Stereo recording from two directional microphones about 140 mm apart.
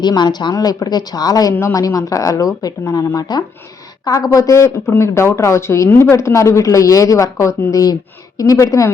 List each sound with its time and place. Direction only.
0.0 s speech: 30° left (ahead or behind)